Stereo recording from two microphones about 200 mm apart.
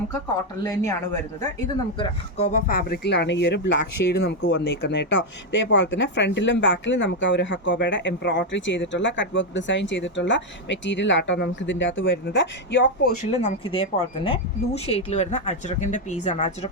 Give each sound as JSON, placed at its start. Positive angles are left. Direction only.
{"t": 0.6, "sound": "speech", "side_deg": 15}
{"t": 2.4, "sound": "speech", "side_deg": 40}
{"t": 13.3, "sound": "speech", "side_deg": 30}
{"t": 14.8, "sound": "speech", "side_deg": 35}